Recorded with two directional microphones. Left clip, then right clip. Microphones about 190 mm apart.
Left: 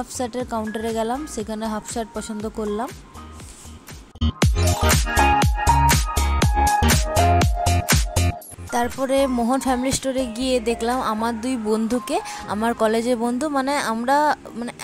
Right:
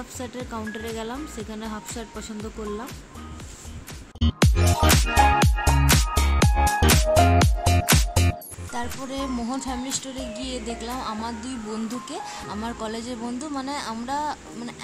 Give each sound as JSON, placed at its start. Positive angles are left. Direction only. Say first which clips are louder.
{"t": 0.2, "sound": "speech", "louder": "left 8 dB", "side_deg": 40}
{"t": 4.2, "sound": "music", "louder": "left 1 dB", "side_deg": 0}
{"t": 8.7, "sound": "music", "louder": "left 11 dB", "side_deg": 45}